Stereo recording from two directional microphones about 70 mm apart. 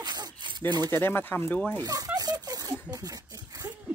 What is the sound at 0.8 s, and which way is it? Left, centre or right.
Speech, left.